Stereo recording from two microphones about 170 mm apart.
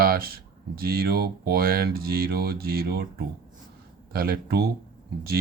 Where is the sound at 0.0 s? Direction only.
60° right (ahead or behind).